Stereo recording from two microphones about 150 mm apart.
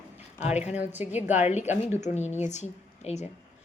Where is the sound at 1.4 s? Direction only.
50° left (ahead or behind).